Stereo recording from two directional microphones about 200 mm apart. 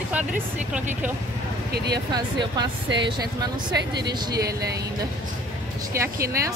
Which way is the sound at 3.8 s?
55° right (ahead or behind).